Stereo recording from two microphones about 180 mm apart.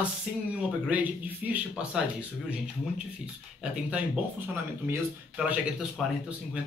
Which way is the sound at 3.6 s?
5° right (ahead or behind).